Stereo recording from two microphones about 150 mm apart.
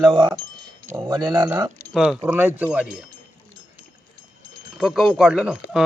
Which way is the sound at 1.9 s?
Centre (ahead or behind).